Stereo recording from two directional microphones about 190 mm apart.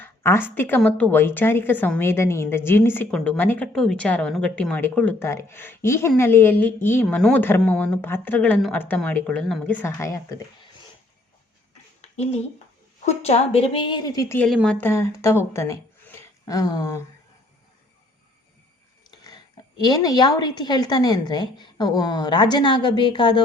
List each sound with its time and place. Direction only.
0.0 s speech: 10° left (ahead or behind)
12.0 s a sound: 35° left (ahead or behind)
13.1 s speech: 35° left (ahead or behind); by 17.0 s 20° left (ahead or behind)
19.8 s a woman's voice: 20° left (ahead or behind)